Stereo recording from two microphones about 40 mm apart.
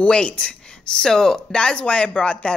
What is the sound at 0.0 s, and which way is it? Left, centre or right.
A woman's voice, left.